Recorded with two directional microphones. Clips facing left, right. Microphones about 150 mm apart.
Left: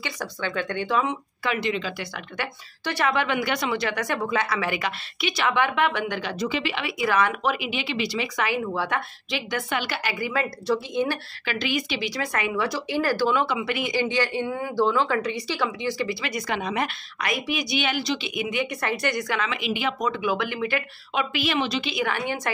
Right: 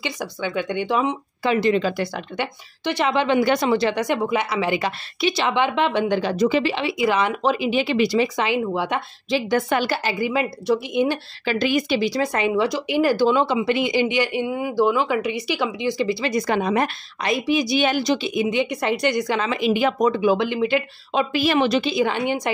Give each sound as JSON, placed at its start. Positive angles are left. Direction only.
{"t": 0.0, "sound": "speech", "side_deg": -10}
{"t": 2.3, "sound": "speech", "side_deg": -20}
{"t": 6.3, "sound": "a woman's voice", "side_deg": -45}
{"t": 8.4, "sound": "speech", "side_deg": -20}
{"t": 9.3, "sound": "a woman's voice", "side_deg": -40}
{"t": 10.0, "sound": "speech", "side_deg": -20}
{"t": 11.4, "sound": "speech", "side_deg": -45}
{"t": 12.1, "sound": "speech", "side_deg": -25}
{"t": 17.2, "sound": "a woman's voice", "side_deg": -30}
{"t": 21.2, "sound": "speech", "side_deg": -40}
{"t": 21.8, "sound": "speech", "side_deg": -25}